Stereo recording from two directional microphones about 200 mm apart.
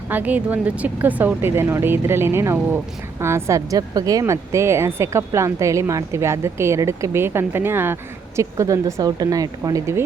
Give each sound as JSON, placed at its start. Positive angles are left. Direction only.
{"t": 0.1, "sound": "a woman's voice", "side_deg": -10}